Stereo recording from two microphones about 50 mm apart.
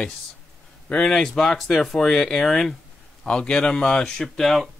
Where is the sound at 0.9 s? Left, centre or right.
Centre.